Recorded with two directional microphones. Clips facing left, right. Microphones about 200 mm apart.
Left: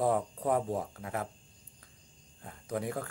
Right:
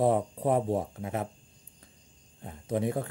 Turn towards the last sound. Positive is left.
turn(degrees=-25)  # may be behind; listen again after turning